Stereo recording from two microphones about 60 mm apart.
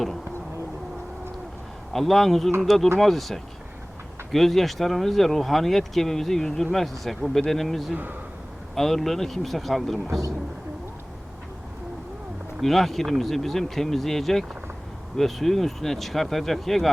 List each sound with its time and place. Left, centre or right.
1.9 s speech: centre
10.1 s speech: right
12.6 s speech: centre